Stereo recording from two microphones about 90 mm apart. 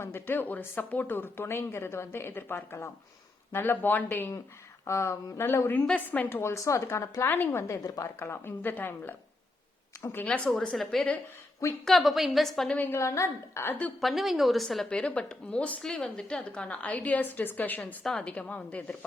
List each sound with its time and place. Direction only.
0.0 s speech: 25° left (ahead or behind)
7.9 s speech: 40° left (ahead or behind)
8.2 s speech: 25° left (ahead or behind)
10.2 s a woman's voice: 10° left (ahead or behind)
12.7 s speech: 20° left (ahead or behind)
13.0 s speech: 35° left (ahead or behind)
14.0 s a woman's voice: centre (ahead or behind)
14.8 s a woman's voice: 10° left (ahead or behind)
18.0 s a woman's voice: 5° left (ahead or behind)